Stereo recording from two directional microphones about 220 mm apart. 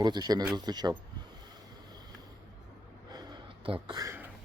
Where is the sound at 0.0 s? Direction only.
20° right (ahead or behind).